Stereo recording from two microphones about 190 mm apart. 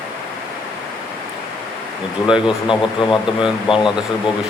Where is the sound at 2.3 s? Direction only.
5° right (ahead or behind).